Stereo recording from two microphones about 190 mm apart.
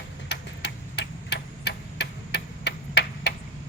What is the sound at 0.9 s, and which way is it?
Tick-tock, 65° left (ahead or behind).